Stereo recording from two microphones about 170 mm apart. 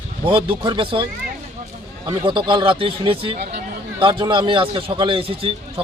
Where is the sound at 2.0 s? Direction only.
30° right (ahead or behind).